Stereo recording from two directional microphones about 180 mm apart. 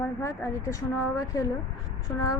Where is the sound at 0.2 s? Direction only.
15° left (ahead or behind).